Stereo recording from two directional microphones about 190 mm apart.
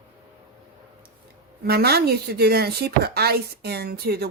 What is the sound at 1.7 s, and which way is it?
Speech, 55° right (ahead or behind).